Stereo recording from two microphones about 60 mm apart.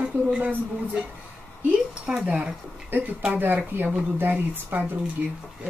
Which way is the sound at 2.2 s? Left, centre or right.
Right.